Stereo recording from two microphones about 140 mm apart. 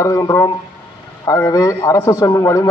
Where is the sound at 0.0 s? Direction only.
20° left (ahead or behind).